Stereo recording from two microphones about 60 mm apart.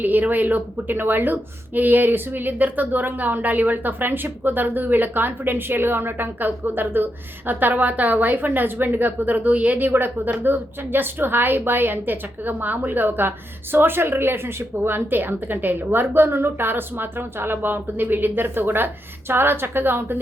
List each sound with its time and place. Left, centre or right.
0.0 s speech: right